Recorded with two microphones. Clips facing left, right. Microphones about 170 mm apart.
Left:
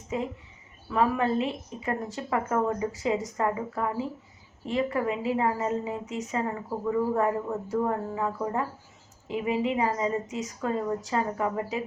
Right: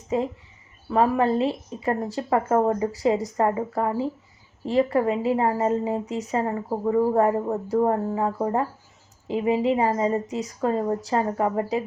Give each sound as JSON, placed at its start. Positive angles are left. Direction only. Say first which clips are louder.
{"t": 0.1, "sound": "a woman's voice", "louder": "right 6 dB", "side_deg": -35}